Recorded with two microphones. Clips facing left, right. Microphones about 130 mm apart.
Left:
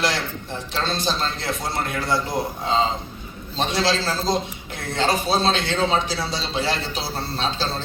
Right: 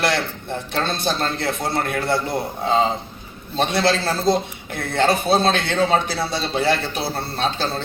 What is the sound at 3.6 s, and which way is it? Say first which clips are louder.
A man's voice: right 3 dB; 55° right (ahead or behind).